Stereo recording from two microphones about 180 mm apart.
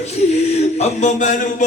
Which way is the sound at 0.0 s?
35° left (ahead or behind).